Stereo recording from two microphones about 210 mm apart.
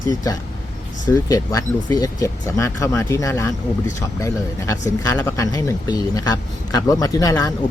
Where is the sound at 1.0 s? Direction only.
15° left (ahead or behind).